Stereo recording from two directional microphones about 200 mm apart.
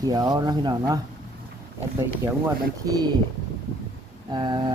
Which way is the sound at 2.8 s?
20° right (ahead or behind).